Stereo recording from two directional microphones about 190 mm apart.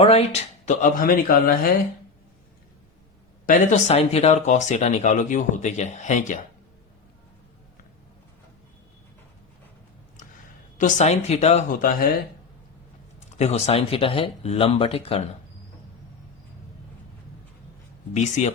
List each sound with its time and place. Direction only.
0.0 s speech: 35° left (ahead or behind)
3.4 s speech: 40° left (ahead or behind)
10.8 s speech: 40° left (ahead or behind)
13.1 s speech: 35° left (ahead or behind)
18.1 s speech: 35° left (ahead or behind)